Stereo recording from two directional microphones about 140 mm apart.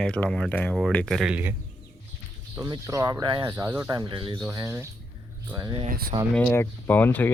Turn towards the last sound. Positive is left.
turn(degrees=15)  # may be behind; listen again after turning